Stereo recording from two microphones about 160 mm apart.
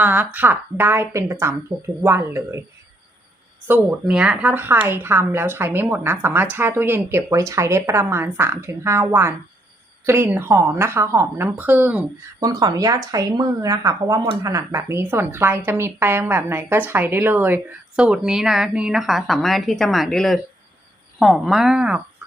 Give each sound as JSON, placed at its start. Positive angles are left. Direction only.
{"t": 0.0, "sound": "speech", "side_deg": -10}
{"t": 3.7, "sound": "speech", "side_deg": -5}
{"t": 12.4, "sound": "speech", "side_deg": -20}